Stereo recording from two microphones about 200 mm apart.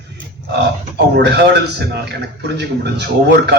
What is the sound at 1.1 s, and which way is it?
A man's voice, 60° right (ahead or behind).